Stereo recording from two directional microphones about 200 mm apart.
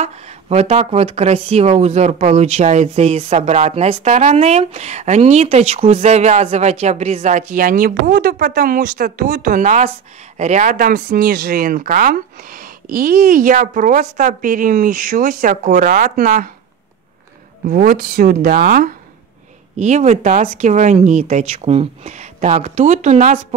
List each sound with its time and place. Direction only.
0.0 s speech: 30° right (ahead or behind)
17.6 s speech: 45° right (ahead or behind)